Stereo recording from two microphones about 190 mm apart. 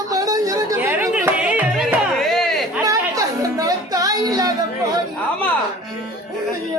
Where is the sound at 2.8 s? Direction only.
15° right (ahead or behind).